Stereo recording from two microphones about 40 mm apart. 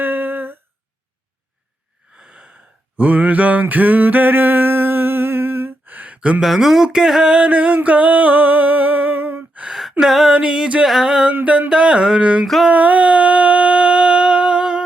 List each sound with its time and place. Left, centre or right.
0.0 s humming: right
2.1 s gasp: right
3.0 s a sound: right
6.4 s speech: centre
7.5 s music: right
7.9 s a sound: right
10.0 s speech: centre
10.3 s music: right
11.0 s speech: centre
12.6 s a sound: right